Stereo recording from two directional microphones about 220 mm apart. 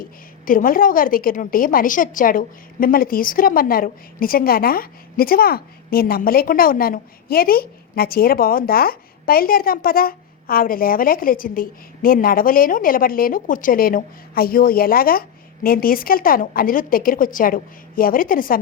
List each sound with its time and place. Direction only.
0.0 s a woman's voice: 40° left (ahead or behind)